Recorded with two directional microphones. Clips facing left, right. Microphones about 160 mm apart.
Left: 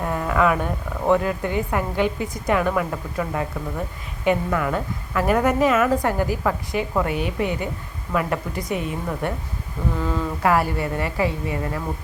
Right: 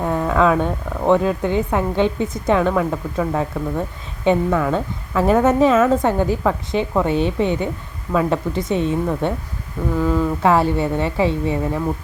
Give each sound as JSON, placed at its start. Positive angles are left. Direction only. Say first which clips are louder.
{"t": 0.0, "sound": "a woman's voice", "louder": "right 4 dB", "side_deg": -20}
{"t": 10.4, "sound": "a woman's voice", "louder": "right 3 dB", "side_deg": -25}